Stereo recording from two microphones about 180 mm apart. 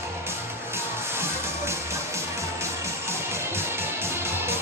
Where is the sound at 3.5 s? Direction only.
15° right (ahead or behind).